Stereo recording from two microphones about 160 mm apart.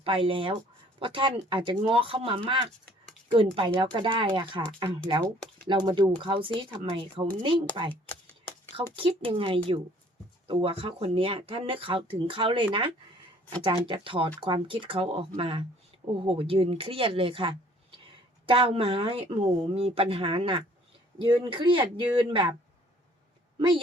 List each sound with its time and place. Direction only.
0.0 s speech: 35° right (ahead or behind)
23.6 s speech: 30° right (ahead or behind)